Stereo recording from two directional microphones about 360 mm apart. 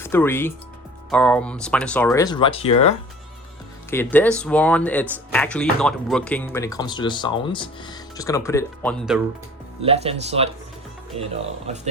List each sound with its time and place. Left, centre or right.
0.0 s speech: centre
3.8 s speech: centre
9.8 s speech: centre
11.7 s speech: centre